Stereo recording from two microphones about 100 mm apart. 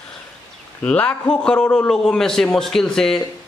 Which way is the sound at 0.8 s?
10° left (ahead or behind).